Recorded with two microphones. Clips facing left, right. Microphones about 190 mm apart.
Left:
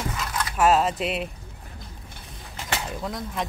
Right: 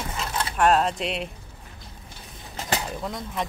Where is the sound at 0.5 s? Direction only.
5° left (ahead or behind).